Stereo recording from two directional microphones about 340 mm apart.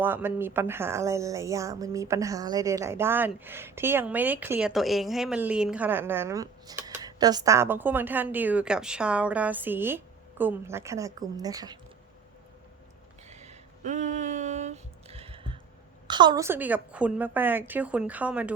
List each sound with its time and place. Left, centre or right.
0.0 s a woman's voice: centre
13.2 s a sound: centre
16.0 s a woman's voice: centre